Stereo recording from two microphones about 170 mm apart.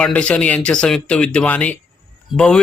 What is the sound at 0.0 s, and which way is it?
A man's voice, 5° left (ahead or behind).